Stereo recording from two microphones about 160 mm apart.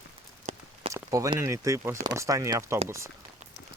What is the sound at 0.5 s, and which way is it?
Walk, 45° right (ahead or behind).